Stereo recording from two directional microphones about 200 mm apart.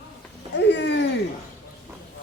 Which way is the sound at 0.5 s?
60° left (ahead or behind).